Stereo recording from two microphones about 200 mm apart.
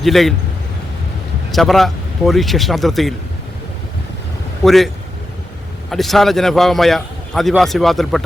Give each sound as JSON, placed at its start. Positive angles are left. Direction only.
{"t": 0.0, "sound": "a man's voice", "side_deg": 0}
{"t": 1.5, "sound": "speech", "side_deg": 0}
{"t": 4.6, "sound": "a man's voice", "side_deg": 0}
{"t": 5.9, "sound": "a man's voice", "side_deg": 0}